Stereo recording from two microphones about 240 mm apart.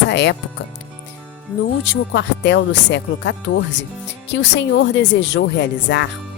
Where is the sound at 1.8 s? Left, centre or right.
Left.